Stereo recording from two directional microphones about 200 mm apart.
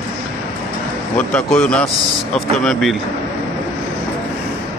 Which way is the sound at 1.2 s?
5° left (ahead or behind).